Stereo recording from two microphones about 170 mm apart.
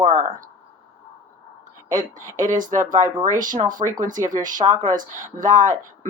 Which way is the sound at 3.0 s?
20° right (ahead or behind).